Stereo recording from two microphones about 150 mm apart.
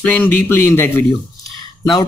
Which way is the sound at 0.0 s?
10° left (ahead or behind).